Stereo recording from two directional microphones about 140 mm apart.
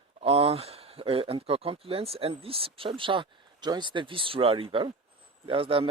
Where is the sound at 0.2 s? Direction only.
45° right (ahead or behind).